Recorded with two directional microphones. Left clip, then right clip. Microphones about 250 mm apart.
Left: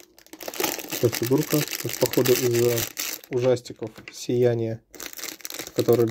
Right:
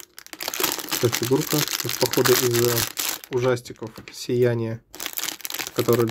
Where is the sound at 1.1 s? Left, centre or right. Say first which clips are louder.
Right 1 dB; centre.